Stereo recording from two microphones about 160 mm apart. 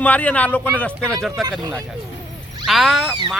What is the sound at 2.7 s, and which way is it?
Speech, centre (ahead or behind).